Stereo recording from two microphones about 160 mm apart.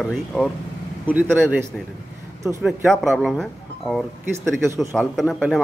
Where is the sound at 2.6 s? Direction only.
Centre (ahead or behind).